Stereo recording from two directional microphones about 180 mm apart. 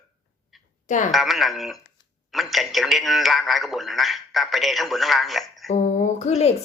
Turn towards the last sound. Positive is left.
turn(degrees=35)  # may be behind; listen again after turning